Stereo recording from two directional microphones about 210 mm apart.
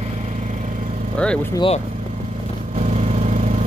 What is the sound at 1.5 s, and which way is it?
Speech, 25° left (ahead or behind).